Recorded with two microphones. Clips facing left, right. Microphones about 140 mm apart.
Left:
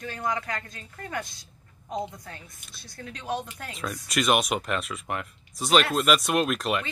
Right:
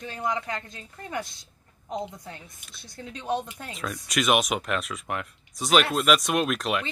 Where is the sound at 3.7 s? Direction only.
Centre (ahead or behind).